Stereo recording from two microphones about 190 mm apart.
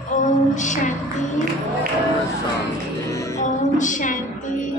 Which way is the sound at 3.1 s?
15° left (ahead or behind).